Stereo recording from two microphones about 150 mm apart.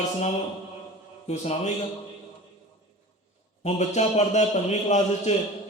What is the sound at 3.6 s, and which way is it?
Speech, 50° left (ahead or behind).